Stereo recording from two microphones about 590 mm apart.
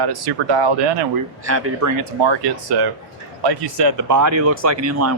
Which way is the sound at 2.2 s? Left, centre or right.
Right.